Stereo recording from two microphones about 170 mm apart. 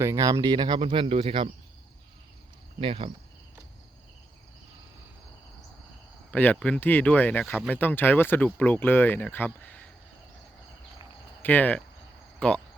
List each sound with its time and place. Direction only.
0.0 s speech: 20° right (ahead or behind)
2.8 s speech: 30° right (ahead or behind)
6.3 s speech: 10° left (ahead or behind)
11.4 s speech: 10° left (ahead or behind)